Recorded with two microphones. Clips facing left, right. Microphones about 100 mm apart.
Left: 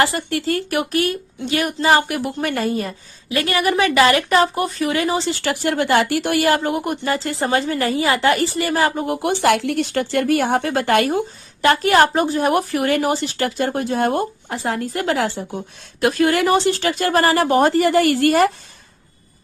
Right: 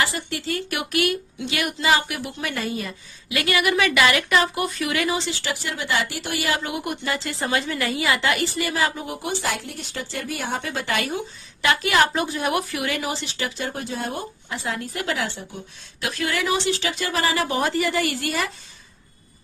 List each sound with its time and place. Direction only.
0.0 s speech: 50° left (ahead or behind)
5.4 s speech: 55° left (ahead or behind)